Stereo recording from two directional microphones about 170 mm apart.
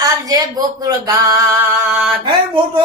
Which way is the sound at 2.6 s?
30° right (ahead or behind).